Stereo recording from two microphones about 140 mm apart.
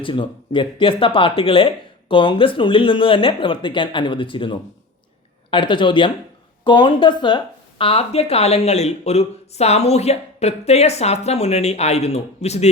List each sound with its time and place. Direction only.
0.0 s speech: 35° left (ahead or behind)